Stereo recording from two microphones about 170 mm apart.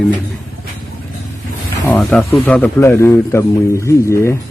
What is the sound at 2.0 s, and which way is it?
A man's voice, centre (ahead or behind).